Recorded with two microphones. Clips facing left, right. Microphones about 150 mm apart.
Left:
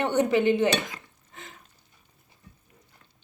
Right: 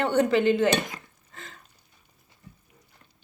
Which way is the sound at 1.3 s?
15° left (ahead or behind).